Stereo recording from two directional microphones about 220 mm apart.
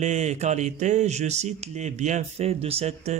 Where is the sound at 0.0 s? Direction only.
30° right (ahead or behind).